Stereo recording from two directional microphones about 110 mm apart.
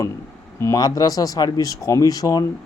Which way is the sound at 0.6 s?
35° left (ahead or behind).